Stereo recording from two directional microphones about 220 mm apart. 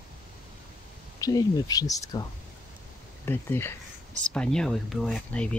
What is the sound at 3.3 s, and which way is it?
Speech, 10° left (ahead or behind).